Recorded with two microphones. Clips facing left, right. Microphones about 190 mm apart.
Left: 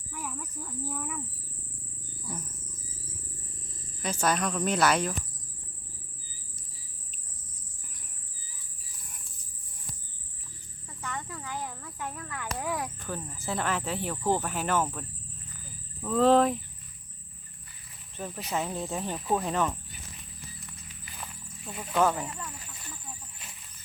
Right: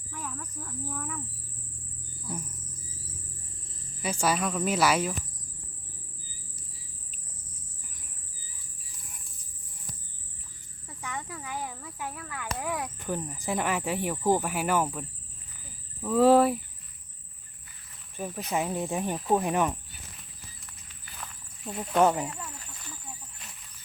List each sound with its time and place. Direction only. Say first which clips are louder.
0.1 s cricket: even; 10° left (ahead or behind)
4.0 s speech: right 1 dB; 10° right (ahead or behind)
10.8 s cricket: even; 10° right (ahead or behind)
12.5 s a sound: even; centre (ahead or behind)
13.1 s speech: right 3 dB; 15° right (ahead or behind)
18.2 s speech: right 2 dB; 10° right (ahead or behind)
21.2 s snake: even; centre (ahead or behind)
21.9 s speech: right 3 dB; 20° right (ahead or behind)
22.3 s a sound: even; centre (ahead or behind)